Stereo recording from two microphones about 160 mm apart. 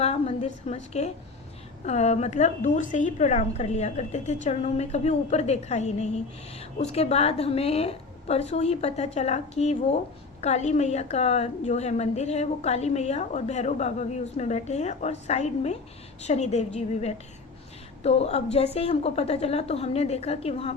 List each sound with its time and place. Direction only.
0.0 s a woman's voice: 40° left (ahead or behind)